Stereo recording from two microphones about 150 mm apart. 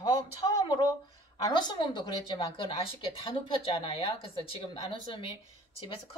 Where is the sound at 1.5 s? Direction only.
30° left (ahead or behind).